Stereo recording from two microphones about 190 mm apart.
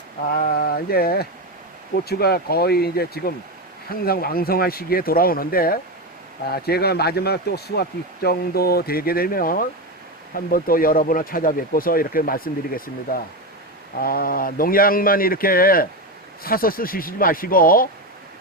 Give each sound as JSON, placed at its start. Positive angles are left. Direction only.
{"t": 0.3, "sound": "speech", "side_deg": 50}